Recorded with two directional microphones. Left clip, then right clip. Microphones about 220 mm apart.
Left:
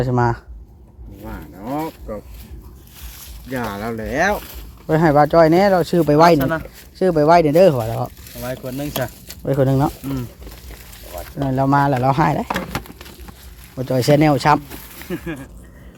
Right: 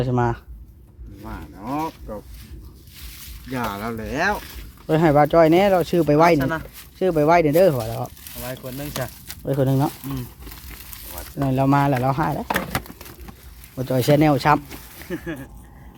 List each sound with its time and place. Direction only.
0.0 s speech: 5° left (ahead or behind)
1.2 s cattle: 5° left (ahead or behind)
1.6 s livestock: 20° left (ahead or behind)
3.5 s speech: centre (ahead or behind)
4.9 s speech: centre (ahead or behind)
6.4 s speech: 25° left (ahead or behind)
7.0 s speech: 5° left (ahead or behind)
8.4 s speech: 40° left (ahead or behind)
9.4 s speech: 5° left (ahead or behind)
11.3 s speech: 5° right (ahead or behind)
12.0 s speech: 25° left (ahead or behind)
12.5 s speech: 25° right (ahead or behind)
13.7 s speech: 10° left (ahead or behind)
15.1 s speech: 35° left (ahead or behind)